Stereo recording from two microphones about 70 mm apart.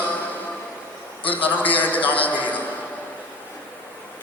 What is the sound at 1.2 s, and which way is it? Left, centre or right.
A man's voice, left.